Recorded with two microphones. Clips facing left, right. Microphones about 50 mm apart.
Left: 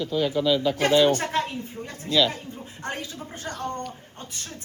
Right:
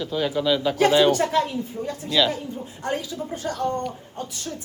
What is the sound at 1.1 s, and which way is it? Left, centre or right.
A woman's voice, left.